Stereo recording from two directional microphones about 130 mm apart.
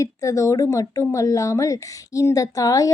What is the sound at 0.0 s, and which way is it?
Speech, 25° left (ahead or behind).